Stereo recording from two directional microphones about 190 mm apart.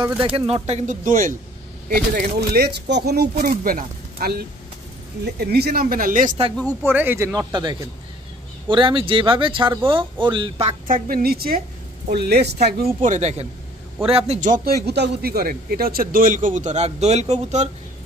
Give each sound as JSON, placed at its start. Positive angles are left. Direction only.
{"t": 0.2, "sound": "speech", "side_deg": -30}
{"t": 1.9, "sound": "speech", "side_deg": -55}
{"t": 6.8, "sound": "speech", "side_deg": -10}
{"t": 10.9, "sound": "speech", "side_deg": -45}